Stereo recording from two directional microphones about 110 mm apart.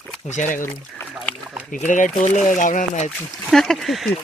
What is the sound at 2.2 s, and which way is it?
Speech, 90° left.